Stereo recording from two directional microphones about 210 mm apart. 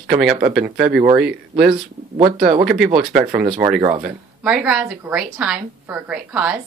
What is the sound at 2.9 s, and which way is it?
Speech, 5° right (ahead or behind).